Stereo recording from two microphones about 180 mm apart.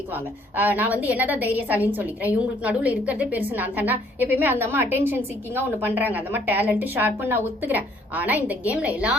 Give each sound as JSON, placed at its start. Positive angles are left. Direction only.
{"t": 0.1, "sound": "a woman's voice", "side_deg": -10}